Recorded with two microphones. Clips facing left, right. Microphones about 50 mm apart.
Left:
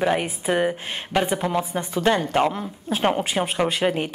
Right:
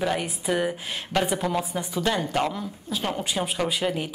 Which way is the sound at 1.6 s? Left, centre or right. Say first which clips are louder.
Left 4 dB; left.